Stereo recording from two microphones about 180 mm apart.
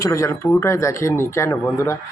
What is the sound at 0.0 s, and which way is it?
Speech, 15° left (ahead or behind).